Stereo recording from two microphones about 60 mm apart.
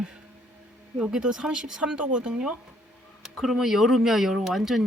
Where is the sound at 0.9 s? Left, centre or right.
Centre.